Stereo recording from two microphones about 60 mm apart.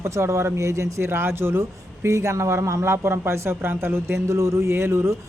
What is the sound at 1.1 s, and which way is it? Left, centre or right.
Speech, right.